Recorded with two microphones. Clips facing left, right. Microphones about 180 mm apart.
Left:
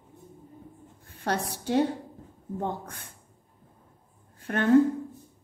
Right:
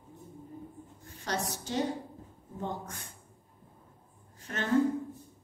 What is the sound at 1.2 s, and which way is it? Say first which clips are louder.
Speech: left 5 dB; 60° left (ahead or behind).